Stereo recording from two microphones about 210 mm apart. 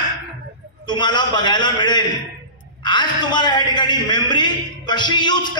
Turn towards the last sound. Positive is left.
turn(degrees=20)  # may be behind; listen again after turning